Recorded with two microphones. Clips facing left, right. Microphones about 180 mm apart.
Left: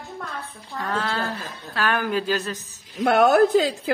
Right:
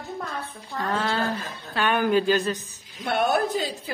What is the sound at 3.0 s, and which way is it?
Speech, 85° left.